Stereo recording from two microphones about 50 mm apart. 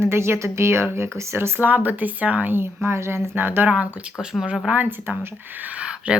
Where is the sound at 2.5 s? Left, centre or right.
Right.